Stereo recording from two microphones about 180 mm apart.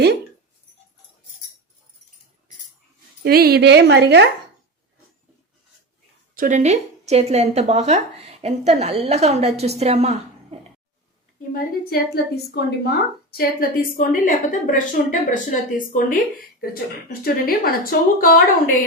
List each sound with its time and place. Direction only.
3.2 s a woman's voice: 60° right (ahead or behind)
6.3 s speech: 45° right (ahead or behind)
11.5 s a woman's voice: 60° left (ahead or behind)